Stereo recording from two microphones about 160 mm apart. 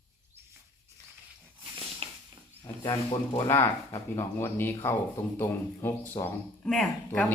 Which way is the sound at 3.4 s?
20° left (ahead or behind).